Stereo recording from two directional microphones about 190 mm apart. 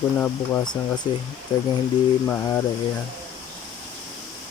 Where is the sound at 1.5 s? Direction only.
20° left (ahead or behind).